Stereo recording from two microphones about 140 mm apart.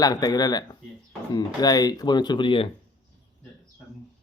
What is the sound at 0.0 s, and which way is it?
Speech, 25° left (ahead or behind).